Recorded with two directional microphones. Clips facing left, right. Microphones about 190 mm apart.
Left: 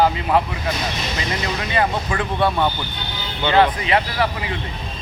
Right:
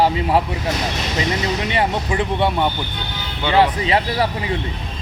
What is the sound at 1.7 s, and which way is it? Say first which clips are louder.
Speech: left 2 dB; 20° right (ahead or behind).